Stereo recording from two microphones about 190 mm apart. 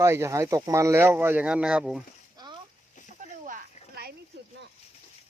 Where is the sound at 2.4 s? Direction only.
20° right (ahead or behind).